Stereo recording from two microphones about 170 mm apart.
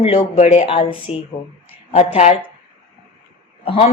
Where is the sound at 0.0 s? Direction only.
40° left (ahead or behind).